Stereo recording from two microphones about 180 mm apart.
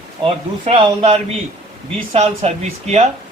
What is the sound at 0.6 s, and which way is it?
Speech, 35° right (ahead or behind).